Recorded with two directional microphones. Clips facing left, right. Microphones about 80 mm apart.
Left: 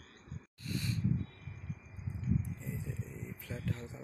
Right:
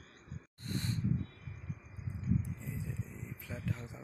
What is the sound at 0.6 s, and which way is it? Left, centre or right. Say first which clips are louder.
Snort: even; right.